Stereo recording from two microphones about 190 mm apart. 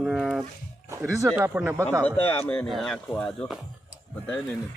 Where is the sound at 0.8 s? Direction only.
15° right (ahead or behind).